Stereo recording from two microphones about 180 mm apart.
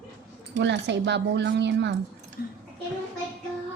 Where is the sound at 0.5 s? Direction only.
75° right (ahead or behind).